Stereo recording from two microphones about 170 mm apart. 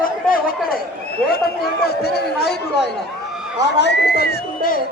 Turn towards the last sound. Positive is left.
turn(degrees=60)  # may be behind; listen again after turning